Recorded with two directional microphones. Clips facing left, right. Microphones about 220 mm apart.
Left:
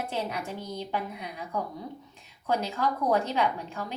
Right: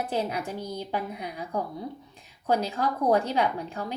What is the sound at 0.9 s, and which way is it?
A woman's voice, 35° right (ahead or behind).